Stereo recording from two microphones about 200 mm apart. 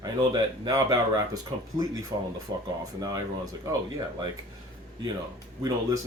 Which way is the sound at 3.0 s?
20° right (ahead or behind).